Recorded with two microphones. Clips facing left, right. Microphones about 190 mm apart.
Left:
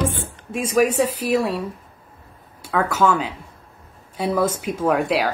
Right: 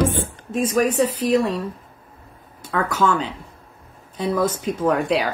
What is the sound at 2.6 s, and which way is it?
Speech, 10° left (ahead or behind).